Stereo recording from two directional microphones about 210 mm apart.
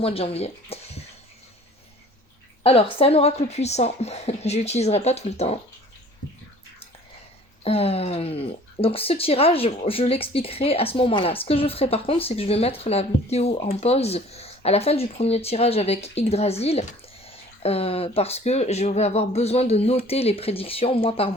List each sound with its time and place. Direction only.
0.0 s speech: 25° left (ahead or behind)
2.6 s speech: 25° left (ahead or behind)
7.6 s speech: 30° left (ahead or behind)